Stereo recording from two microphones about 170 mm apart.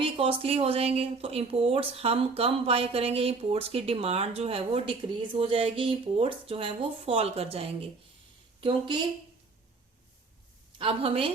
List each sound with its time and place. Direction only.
0.0 s speech: 35° right (ahead or behind)
10.8 s speech: 35° right (ahead or behind)